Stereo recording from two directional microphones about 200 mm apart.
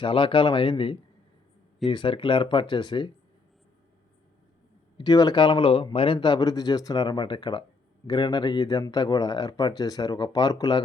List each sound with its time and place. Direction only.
0.0 s speech: 25° left (ahead or behind)
4.9 s speech: 20° left (ahead or behind)